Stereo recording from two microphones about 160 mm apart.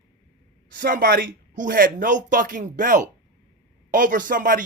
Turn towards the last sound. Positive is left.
turn(degrees=-60)  # may be behind; listen again after turning